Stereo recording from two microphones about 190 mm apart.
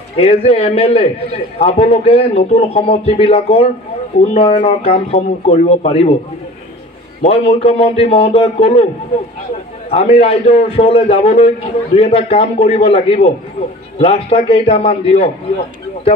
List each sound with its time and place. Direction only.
0.2 s a man's voice: 30° left (ahead or behind)
7.2 s a man's voice: 35° left (ahead or behind)
9.8 s a man's voice: 30° left (ahead or behind)